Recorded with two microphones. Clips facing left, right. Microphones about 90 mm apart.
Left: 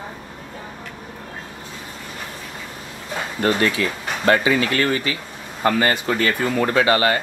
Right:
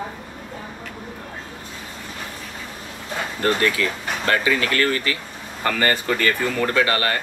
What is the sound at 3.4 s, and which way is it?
Speech, 20° left (ahead or behind).